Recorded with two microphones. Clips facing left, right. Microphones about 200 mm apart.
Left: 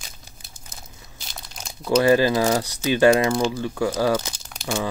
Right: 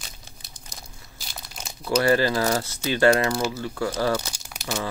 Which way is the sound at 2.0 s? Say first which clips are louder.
Left 3 dB; 15° left (ahead or behind).